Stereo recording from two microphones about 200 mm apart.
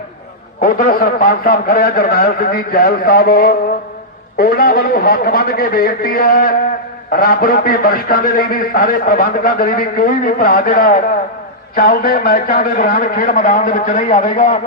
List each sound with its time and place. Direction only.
0.6 s a man's voice: 45° left (ahead or behind)